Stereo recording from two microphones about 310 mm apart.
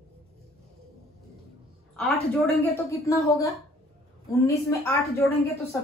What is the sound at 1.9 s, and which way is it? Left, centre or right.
A woman's voice, centre.